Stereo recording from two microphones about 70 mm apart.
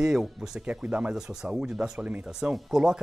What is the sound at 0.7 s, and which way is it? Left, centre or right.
Speech, centre.